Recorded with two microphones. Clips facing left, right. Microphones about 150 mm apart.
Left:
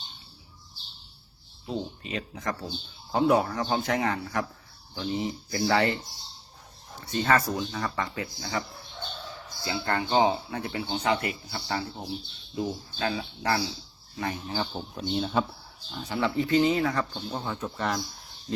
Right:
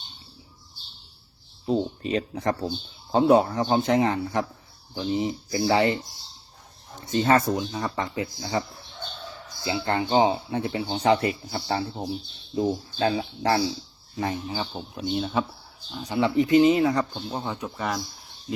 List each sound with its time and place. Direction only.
1.6 s speech: 35° right (ahead or behind); by 6.0 s 20° right (ahead or behind)
7.0 s speech: 20° right (ahead or behind)
9.6 s speech: 20° right (ahead or behind)
14.4 s speech: 10° right (ahead or behind)
16.0 s speech: 15° right (ahead or behind)
17.7 s speech: 5° right (ahead or behind)